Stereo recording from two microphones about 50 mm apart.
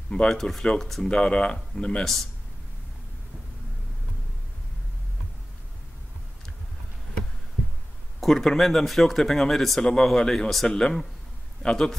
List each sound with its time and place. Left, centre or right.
0.3 s speech: centre
1.0 s speech: centre
8.2 s speech: centre